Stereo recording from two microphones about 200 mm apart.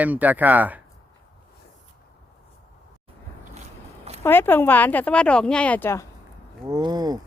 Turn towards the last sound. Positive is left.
turn(degrees=-20)  # may be behind; listen again after turning